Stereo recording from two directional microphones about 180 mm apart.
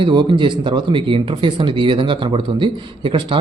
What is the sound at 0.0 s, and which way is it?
Speech, 25° right (ahead or behind).